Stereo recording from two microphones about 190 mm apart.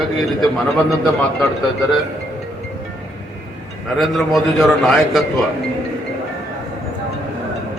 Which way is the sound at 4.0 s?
Centre (ahead or behind).